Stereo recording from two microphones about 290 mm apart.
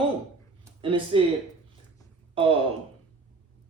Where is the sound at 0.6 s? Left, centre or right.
Centre.